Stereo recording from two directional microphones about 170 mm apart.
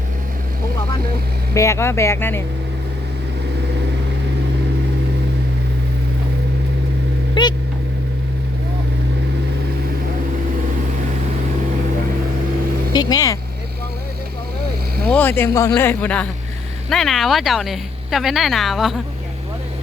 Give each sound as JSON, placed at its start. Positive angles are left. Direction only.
{"t": 1.5, "sound": "speech", "side_deg": 15}
{"t": 7.4, "sound": "a sound", "side_deg": 30}
{"t": 12.9, "sound": "vehicle", "side_deg": 25}
{"t": 15.1, "sound": "speech", "side_deg": 10}